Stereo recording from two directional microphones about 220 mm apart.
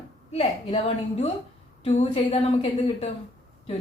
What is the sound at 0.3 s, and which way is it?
A woman's voice, 30° left (ahead or behind).